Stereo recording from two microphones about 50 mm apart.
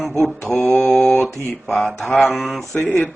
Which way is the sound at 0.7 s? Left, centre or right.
Left.